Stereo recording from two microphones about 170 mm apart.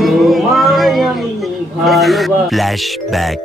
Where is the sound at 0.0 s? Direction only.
Centre (ahead or behind).